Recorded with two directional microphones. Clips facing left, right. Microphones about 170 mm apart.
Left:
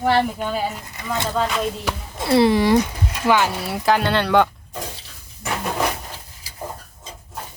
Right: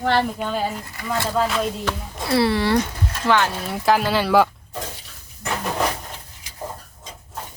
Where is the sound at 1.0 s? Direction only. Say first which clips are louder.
Even; 20° left (ahead or behind).